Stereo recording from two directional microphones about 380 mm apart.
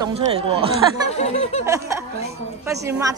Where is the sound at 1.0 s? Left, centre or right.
Centre.